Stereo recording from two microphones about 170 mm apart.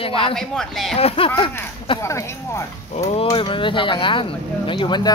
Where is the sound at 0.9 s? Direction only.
35° left (ahead or behind).